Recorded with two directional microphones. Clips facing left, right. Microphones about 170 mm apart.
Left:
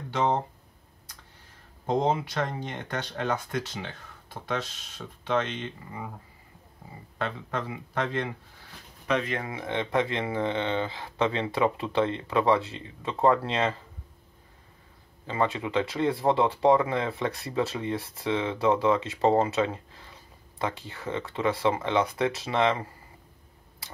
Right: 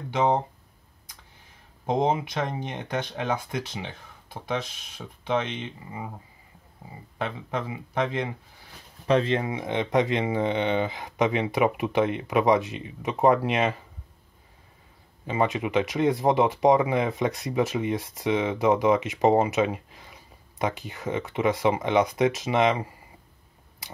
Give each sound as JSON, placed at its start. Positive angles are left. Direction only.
{"t": 0.1, "sound": "speech", "side_deg": -15}
{"t": 1.9, "sound": "speech", "side_deg": -15}
{"t": 7.2, "sound": "speech", "side_deg": -10}
{"t": 9.0, "sound": "speech", "side_deg": -30}
{"t": 15.2, "sound": "speech", "side_deg": -20}